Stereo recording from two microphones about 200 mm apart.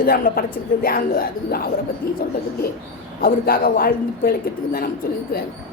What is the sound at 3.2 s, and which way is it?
A woman's voice, 45° left (ahead or behind).